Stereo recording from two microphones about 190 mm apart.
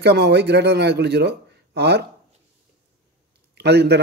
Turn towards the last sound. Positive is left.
turn(degrees=-60)  # may be behind; listen again after turning